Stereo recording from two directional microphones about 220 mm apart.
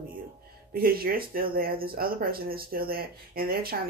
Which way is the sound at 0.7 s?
45° right (ahead or behind).